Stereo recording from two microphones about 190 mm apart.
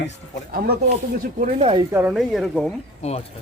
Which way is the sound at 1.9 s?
10° right (ahead or behind).